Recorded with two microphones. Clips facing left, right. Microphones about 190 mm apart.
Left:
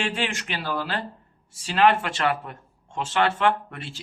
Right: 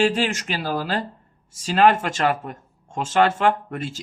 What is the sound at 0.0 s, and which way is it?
Speech, 40° right (ahead or behind).